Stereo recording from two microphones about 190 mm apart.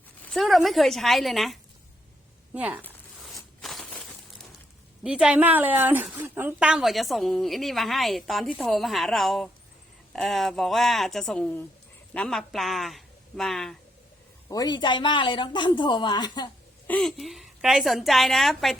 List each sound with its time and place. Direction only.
0.2 s a woman's voice: 5° left (ahead or behind)
3.3 s a sound: centre (ahead or behind)
5.0 s a woman's voice: 5° right (ahead or behind)
14.4 s speech: 20° left (ahead or behind)
16.8 s a woman's voice: 5° left (ahead or behind)